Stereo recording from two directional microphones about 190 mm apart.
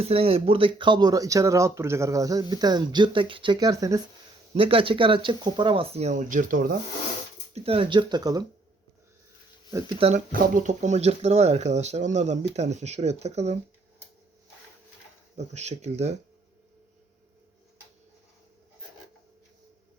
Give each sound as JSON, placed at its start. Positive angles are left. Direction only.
{"t": 0.0, "sound": "speech", "side_deg": -30}
{"t": 4.5, "sound": "speech", "side_deg": -30}
{"t": 7.5, "sound": "speech", "side_deg": -30}
{"t": 10.0, "sound": "speech", "side_deg": -40}
{"t": 15.4, "sound": "speech", "side_deg": -35}